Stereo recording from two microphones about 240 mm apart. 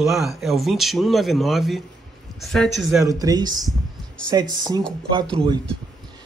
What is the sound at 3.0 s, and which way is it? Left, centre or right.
Speech, centre.